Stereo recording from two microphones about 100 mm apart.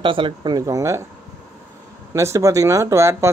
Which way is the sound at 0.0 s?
60° right (ahead or behind).